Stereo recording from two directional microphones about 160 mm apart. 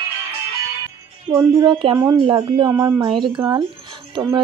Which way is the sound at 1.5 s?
30° right (ahead or behind).